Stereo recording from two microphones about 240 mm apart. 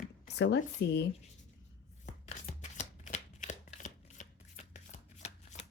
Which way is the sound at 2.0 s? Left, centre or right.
Left.